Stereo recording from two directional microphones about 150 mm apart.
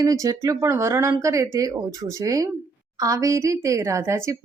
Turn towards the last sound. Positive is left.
turn(degrees=-20)  # may be behind; listen again after turning